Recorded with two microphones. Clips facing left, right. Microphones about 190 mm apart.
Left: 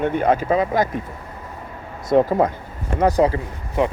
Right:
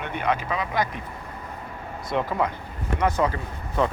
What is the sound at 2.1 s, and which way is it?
Speech, 45° left (ahead or behind).